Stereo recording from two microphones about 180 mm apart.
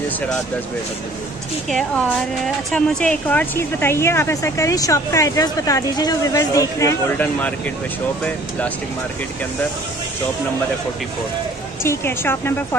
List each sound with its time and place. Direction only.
2.4 s speech: 5° left (ahead or behind)
11.8 s speech: 15° left (ahead or behind)